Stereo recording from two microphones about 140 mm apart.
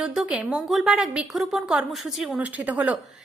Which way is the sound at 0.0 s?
5° right (ahead or behind).